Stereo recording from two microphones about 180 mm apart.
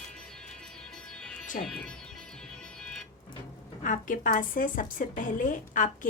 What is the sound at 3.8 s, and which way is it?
A woman's voice, 45° left (ahead or behind).